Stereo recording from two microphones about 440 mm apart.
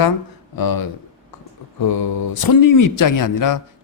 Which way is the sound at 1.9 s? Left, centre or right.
Left.